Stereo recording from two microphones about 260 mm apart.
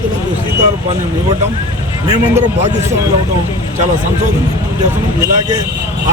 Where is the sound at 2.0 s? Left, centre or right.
Centre.